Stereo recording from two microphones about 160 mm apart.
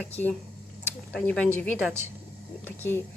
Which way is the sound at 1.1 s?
10° left (ahead or behind).